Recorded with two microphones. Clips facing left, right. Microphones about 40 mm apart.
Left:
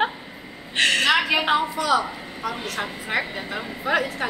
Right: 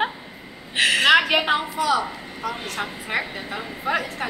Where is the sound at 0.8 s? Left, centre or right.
Centre.